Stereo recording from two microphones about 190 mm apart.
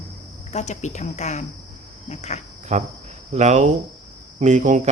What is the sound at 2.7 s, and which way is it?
Speech, 35° right (ahead or behind).